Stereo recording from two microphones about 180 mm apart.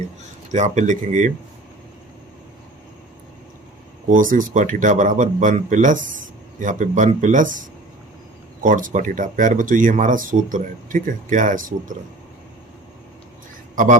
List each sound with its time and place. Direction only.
0.5 s speech: 40° right (ahead or behind)
4.1 s speech: 50° right (ahead or behind)
13.7 s a man's voice: 45° right (ahead or behind)